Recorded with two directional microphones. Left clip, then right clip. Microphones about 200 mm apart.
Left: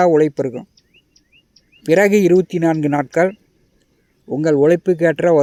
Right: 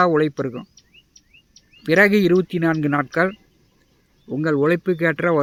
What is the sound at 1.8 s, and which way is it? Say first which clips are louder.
Speech: left 3 dB; 15° left (ahead or behind).